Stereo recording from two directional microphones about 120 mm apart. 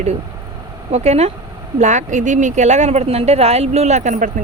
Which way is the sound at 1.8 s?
80° right.